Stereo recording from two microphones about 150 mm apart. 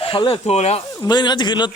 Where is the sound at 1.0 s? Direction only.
30° left (ahead or behind).